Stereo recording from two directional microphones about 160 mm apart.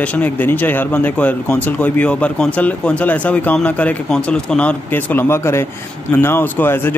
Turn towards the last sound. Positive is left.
turn(degrees=15)  # may be behind; listen again after turning